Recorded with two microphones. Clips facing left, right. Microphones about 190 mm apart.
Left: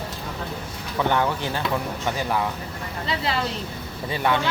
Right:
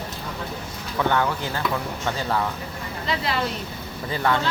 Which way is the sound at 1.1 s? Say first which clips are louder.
Even; 20° left (ahead or behind).